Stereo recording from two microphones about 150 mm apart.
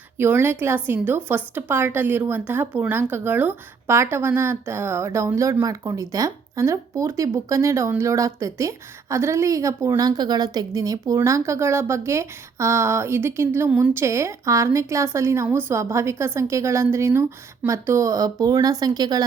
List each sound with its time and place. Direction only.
0.2 s speech: 15° right (ahead or behind)